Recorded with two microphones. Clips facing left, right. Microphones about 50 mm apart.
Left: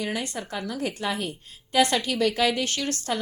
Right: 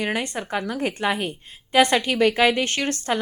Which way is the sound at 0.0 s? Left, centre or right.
Right.